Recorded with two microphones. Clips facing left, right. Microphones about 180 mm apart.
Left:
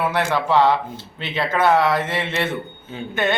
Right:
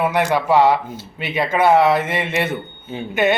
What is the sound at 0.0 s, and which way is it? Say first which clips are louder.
A man's voice: right 3 dB; 15° right (ahead or behind).